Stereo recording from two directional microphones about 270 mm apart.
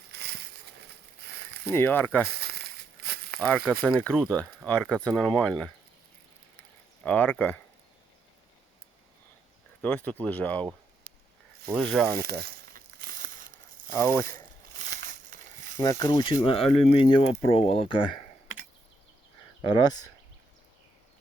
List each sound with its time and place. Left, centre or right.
0.1 s a sound: right
1.6 s speech: centre
2.4 s a sound: right
3.4 s speech: centre
7.0 s speech: centre
9.8 s speech: centre
11.7 s speech: centre
12.1 s crumpling: right
13.9 s speech: centre
14.8 s a sound: right
15.8 s speech: centre
19.6 s speech: centre